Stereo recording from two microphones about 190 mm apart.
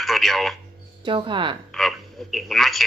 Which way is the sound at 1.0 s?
25° right (ahead or behind).